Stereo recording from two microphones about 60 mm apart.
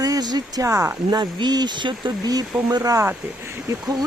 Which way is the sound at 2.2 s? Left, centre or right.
Right.